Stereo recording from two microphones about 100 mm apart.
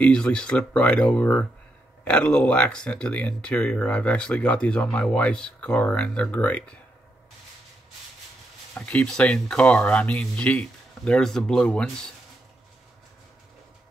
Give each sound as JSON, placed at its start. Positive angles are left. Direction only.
{"t": 0.0, "sound": "speech", "side_deg": 10}
{"t": 8.7, "sound": "speech", "side_deg": 10}